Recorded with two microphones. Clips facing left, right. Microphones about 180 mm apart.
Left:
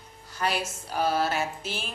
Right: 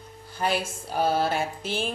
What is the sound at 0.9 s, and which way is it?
Speech, 30° right (ahead or behind).